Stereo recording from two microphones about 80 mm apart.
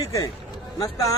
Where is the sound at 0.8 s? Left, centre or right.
Left.